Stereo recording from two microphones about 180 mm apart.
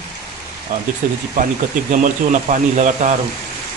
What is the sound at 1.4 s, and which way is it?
A man's voice, 50° right (ahead or behind).